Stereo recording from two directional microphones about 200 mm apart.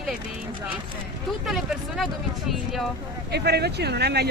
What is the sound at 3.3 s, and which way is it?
Speech, 55° right (ahead or behind).